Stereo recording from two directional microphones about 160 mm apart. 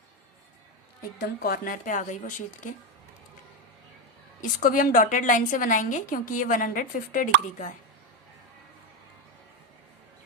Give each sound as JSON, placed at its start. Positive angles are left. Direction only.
{"t": 1.2, "sound": "a woman's voice", "side_deg": 70}
{"t": 4.4, "sound": "a woman's voice", "side_deg": 55}